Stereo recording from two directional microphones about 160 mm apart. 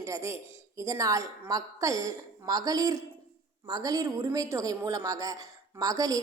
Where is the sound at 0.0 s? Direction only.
20° right (ahead or behind).